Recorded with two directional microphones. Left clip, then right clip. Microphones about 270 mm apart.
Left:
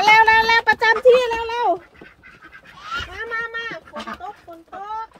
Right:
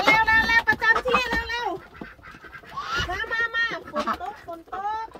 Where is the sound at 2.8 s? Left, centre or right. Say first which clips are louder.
Even; centre.